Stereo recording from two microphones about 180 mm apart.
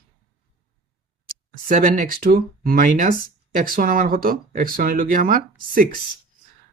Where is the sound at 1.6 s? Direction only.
45° right (ahead or behind).